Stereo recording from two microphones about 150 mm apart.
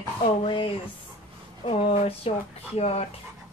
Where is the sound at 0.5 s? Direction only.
35° left (ahead or behind).